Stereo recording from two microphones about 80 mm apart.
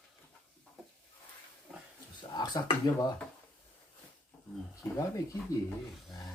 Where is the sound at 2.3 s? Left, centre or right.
Left.